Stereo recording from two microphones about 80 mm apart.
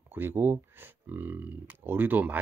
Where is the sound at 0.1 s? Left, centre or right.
Right.